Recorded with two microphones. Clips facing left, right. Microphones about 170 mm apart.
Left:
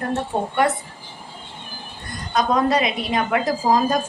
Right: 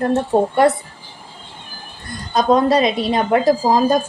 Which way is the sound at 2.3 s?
30° right (ahead or behind).